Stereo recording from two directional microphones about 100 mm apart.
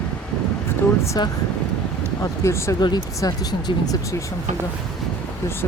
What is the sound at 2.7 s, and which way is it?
Speech, 45° left (ahead or behind).